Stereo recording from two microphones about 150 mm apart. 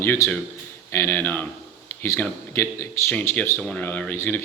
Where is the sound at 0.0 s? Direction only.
15° left (ahead or behind).